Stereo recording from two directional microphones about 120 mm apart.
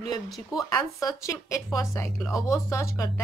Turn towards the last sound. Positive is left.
turn(degrees=25)  # may be behind; listen again after turning